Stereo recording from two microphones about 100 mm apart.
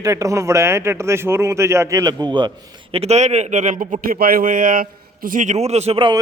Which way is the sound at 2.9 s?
90° right.